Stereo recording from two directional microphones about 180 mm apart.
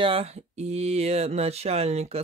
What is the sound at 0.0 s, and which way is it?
Speech, 30° right (ahead or behind).